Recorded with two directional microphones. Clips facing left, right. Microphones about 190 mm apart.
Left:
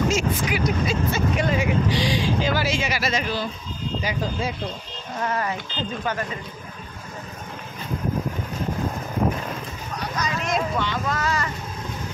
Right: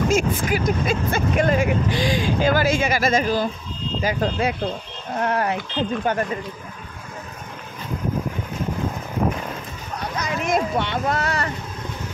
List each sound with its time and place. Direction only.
0.1 s speech: 45° right (ahead or behind)
4.2 s speech: 65° right (ahead or behind)
10.2 s speech: 55° right (ahead or behind)